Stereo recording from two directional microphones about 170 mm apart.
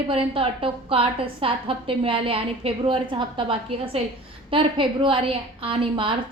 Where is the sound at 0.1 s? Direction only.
35° right (ahead or behind).